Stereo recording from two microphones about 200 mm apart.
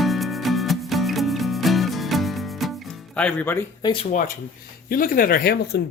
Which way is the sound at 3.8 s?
30° left (ahead or behind).